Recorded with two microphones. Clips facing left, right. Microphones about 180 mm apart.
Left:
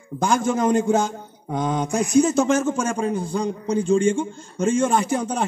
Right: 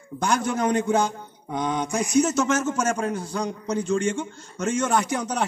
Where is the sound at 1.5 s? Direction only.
45° left (ahead or behind).